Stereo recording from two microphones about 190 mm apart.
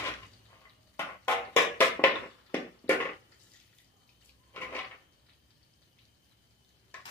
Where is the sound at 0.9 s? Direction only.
10° left (ahead or behind).